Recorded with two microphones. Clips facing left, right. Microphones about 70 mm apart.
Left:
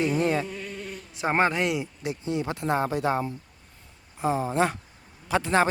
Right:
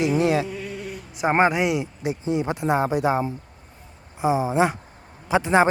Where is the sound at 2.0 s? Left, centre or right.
Right.